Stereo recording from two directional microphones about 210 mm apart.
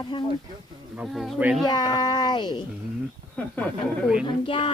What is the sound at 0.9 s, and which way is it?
Speech, centre (ahead or behind).